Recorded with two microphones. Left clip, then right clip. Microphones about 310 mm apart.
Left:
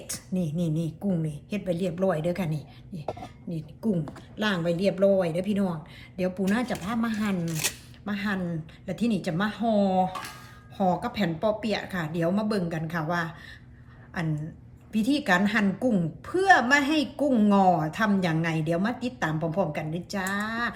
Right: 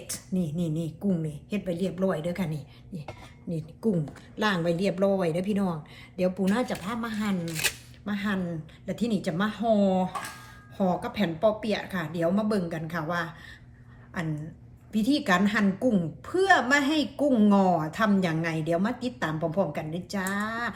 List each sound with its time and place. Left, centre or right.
0.1 s a woman's voice: centre
3.5 s a woman's voice: right; by 20.7 s centre